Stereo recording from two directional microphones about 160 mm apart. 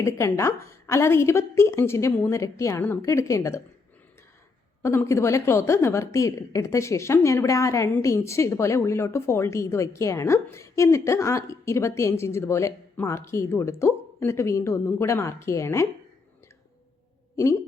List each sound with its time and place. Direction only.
0.0 s a woman's voice: 15° left (ahead or behind)
4.8 s a woman's voice: 15° left (ahead or behind)
17.3 s speech: 20° left (ahead or behind)